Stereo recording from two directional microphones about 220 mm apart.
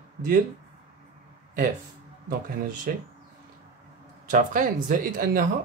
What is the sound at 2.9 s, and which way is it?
Speech, 40° right (ahead or behind).